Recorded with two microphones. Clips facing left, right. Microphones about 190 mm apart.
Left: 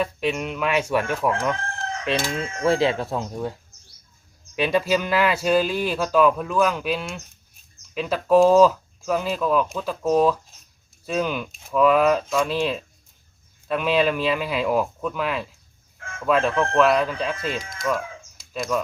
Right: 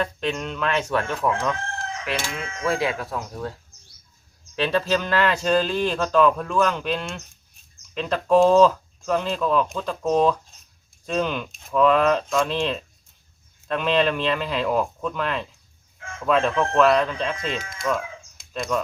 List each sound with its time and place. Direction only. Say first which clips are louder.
0.0 s speech: left 2 dB; 10° left (ahead or behind)
2.0 s speech: left 5 dB; 20° left (ahead or behind)
4.5 s speech: left 1 dB; 10° left (ahead or behind)
17.8 s chicken: even; 5° left (ahead or behind)